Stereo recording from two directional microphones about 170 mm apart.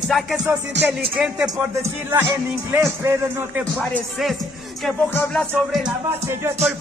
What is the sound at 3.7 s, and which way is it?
Music, 5° left (ahead or behind).